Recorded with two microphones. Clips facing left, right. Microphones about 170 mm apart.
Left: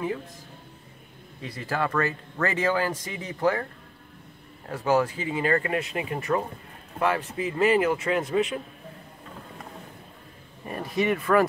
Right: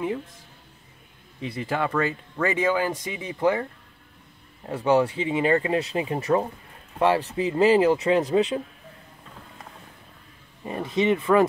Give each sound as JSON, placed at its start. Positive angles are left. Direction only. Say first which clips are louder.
{"t": 1.4, "sound": "speech", "louder": "right 2 dB", "side_deg": -20}
{"t": 4.6, "sound": "speech", "louder": "right 3 dB", "side_deg": -25}
{"t": 10.6, "sound": "speech", "louder": "right 3 dB", "side_deg": -20}